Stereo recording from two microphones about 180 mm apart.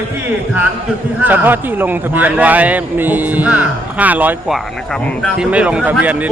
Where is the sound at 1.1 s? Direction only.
10° right (ahead or behind).